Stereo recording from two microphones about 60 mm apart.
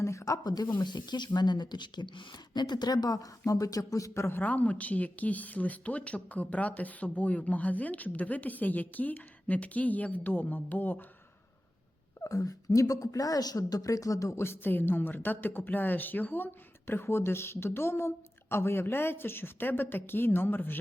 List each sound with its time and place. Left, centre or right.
0.0 s a sound: left
1.1 s speech: left
2.8 s speech: left
4.3 s speech: left
12.2 s speech: left
14.4 s a woman's voice: left